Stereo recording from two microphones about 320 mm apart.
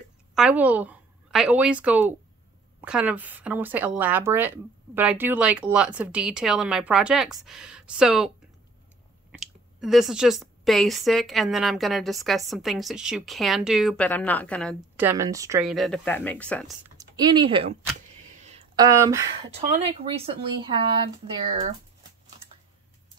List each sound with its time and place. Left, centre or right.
0.3 s a woman's voice: centre
9.3 s speech: centre
16.9 s speech: centre
18.4 s a sound: centre
20.2 s speech: centre